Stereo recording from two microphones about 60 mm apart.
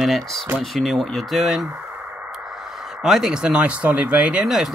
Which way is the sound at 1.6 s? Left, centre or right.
Centre.